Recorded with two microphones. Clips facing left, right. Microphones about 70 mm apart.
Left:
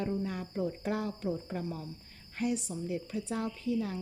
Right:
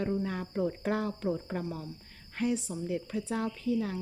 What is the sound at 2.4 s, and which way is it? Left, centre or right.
A woman's voice, right.